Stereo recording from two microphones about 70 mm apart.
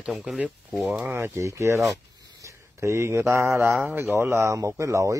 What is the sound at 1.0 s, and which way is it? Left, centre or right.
Speech, right.